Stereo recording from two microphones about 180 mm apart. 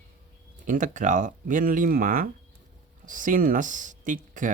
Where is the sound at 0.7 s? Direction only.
45° right (ahead or behind).